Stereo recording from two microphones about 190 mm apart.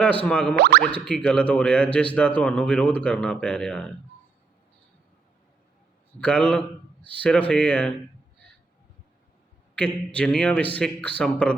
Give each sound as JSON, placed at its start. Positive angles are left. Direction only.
{"t": 0.0, "sound": "speech", "side_deg": 5}
{"t": 0.5, "sound": "boing", "side_deg": -60}
{"t": 0.8, "sound": "speech", "side_deg": 5}
{"t": 6.1, "sound": "speech", "side_deg": 5}
{"t": 9.7, "sound": "a man's voice", "side_deg": 5}